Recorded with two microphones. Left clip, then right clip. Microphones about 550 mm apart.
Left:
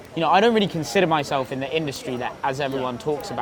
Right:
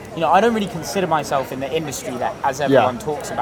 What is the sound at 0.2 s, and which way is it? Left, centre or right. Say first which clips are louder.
Speech: right 2 dB; left.